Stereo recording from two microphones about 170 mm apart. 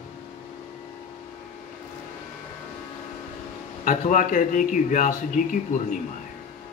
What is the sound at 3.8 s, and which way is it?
A man's voice, 50° left (ahead or behind).